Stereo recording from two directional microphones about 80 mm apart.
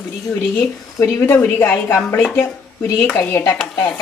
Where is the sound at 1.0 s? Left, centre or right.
Left.